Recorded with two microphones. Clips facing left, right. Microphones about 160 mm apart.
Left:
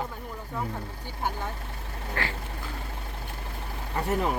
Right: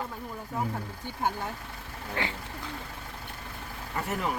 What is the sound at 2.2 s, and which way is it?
Speech, 15° right (ahead or behind).